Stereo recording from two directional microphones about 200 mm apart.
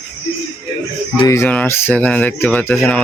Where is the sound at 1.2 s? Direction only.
15° left (ahead or behind).